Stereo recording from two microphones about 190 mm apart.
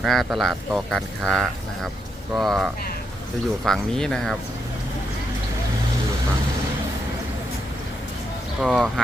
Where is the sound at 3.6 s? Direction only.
Centre (ahead or behind).